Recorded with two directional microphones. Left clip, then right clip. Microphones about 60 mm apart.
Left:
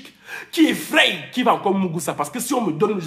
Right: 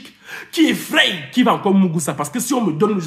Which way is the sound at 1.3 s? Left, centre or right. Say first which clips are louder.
Right 2 dB; left.